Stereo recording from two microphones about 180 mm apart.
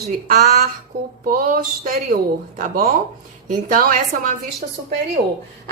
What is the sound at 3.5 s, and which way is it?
Speech, 50° right (ahead or behind).